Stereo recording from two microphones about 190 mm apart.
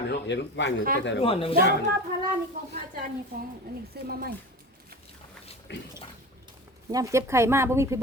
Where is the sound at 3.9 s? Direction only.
55° right (ahead or behind).